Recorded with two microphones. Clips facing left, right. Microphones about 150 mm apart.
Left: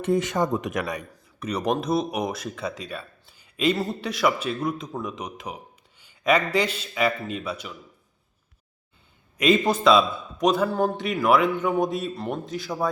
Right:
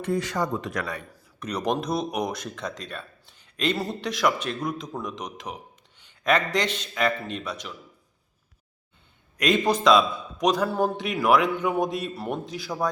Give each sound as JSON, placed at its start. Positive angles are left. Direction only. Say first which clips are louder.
{"t": 0.0, "sound": "speech", "louder": "left 3 dB", "side_deg": 20}
{"t": 1.4, "sound": "a man's voice", "louder": "left 1 dB", "side_deg": 5}
{"t": 9.4, "sound": "speech", "louder": "left 2 dB", "side_deg": 5}